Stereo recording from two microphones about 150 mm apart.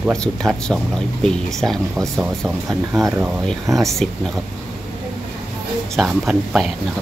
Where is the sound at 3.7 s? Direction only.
20° right (ahead or behind).